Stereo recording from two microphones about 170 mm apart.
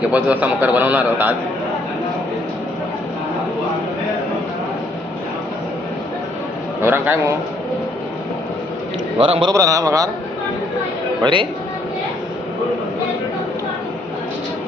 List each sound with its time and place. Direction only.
0.1 s a man's voice: 10° right (ahead or behind)
6.8 s a man's voice: 15° right (ahead or behind)
9.1 s a man's voice: 30° right (ahead or behind)
11.2 s a man's voice: 30° right (ahead or behind)